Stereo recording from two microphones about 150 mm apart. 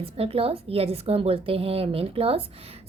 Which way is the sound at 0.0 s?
40° right (ahead or behind).